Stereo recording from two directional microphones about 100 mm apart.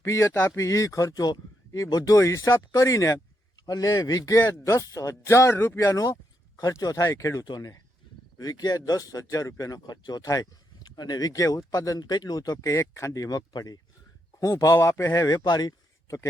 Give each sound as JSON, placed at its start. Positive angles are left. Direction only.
{"t": 0.0, "sound": "speech", "side_deg": 30}
{"t": 7.4, "sound": "speech", "side_deg": 45}
{"t": 12.7, "sound": "a man's voice", "side_deg": 25}